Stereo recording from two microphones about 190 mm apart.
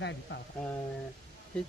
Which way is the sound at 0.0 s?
70° left (ahead or behind).